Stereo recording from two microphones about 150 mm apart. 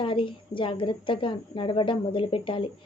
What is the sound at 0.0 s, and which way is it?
A woman's voice, 35° left (ahead or behind).